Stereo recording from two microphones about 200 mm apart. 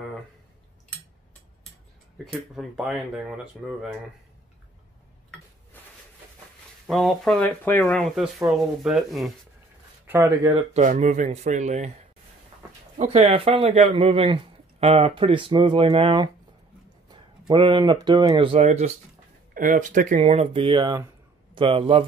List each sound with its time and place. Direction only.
2.5 s speech: 5° right (ahead or behind)
6.9 s speech: centre (ahead or behind)
10.0 s speech: 15° right (ahead or behind)
10.5 s speech: 35° right (ahead or behind)
12.9 s speech: 35° right (ahead or behind)
17.5 s speech: 25° right (ahead or behind)